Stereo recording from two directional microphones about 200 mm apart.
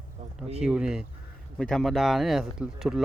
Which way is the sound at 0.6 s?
5° right (ahead or behind).